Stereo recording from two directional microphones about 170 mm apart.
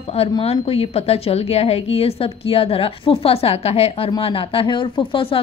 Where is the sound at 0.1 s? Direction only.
35° left (ahead or behind).